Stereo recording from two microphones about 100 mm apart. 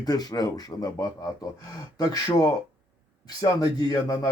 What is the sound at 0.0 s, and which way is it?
Speech, 40° left (ahead or behind).